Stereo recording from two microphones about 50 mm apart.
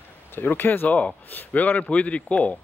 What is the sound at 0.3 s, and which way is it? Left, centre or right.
A man's voice, left.